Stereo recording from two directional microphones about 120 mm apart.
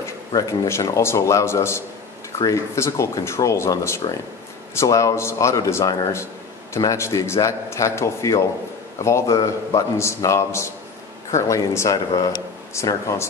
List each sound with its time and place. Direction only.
0.0 s a man's voice: 25° left (ahead or behind)